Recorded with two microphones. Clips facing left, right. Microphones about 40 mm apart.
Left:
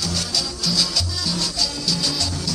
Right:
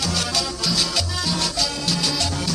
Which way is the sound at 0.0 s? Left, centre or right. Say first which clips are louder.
Right 2 dB; right.